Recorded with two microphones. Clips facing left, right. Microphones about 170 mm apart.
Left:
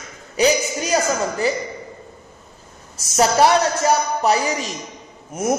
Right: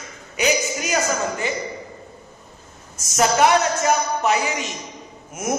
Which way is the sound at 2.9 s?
35° left (ahead or behind).